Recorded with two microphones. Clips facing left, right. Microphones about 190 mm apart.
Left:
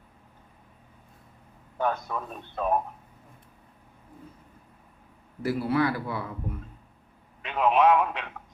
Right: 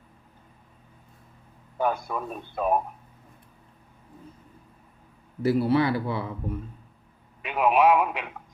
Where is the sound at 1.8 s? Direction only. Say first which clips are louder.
Right 2 dB; 10° right (ahead or behind).